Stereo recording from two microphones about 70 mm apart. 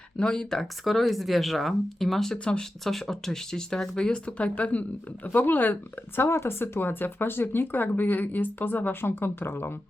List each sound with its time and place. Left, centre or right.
0.2 s speech: centre
2.8 s speech: centre; by 5.7 s left
6.1 s speech: left